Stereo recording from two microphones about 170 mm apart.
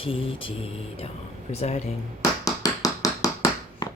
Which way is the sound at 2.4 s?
20° left (ahead or behind).